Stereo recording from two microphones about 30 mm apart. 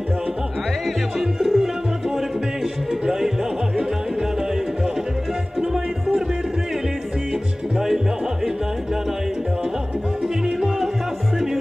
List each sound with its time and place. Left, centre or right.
0.8 s music: centre
5.6 s music: right
10.2 s music: centre